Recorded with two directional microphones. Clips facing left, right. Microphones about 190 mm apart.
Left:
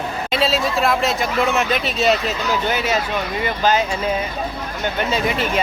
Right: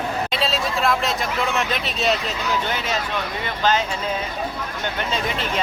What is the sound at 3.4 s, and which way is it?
Speech, 10° left (ahead or behind).